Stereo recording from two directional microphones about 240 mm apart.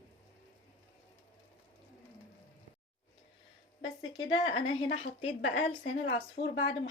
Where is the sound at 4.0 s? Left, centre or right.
Centre.